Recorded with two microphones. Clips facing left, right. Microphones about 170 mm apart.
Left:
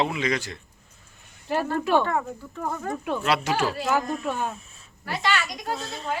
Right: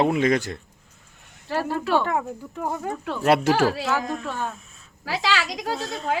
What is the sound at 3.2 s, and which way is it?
Speech, 50° right (ahead or behind).